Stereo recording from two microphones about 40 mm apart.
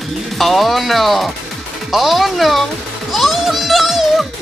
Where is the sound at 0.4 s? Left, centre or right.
Centre.